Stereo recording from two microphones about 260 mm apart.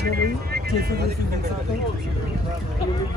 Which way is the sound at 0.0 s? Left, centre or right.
Right.